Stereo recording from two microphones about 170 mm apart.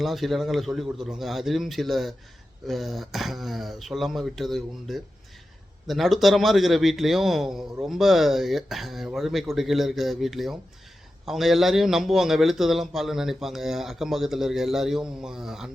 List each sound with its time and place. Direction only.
0.0 s a man's voice: centre (ahead or behind)